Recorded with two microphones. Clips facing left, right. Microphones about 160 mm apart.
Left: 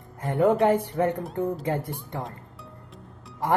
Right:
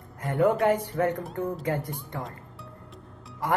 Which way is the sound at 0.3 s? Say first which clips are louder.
Left 2 dB; 20° left (ahead or behind).